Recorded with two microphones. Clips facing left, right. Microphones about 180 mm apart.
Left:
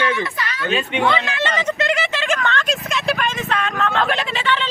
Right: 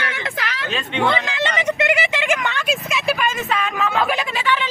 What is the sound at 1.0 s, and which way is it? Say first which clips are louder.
Speech: right 2 dB; 20° right (ahead or behind).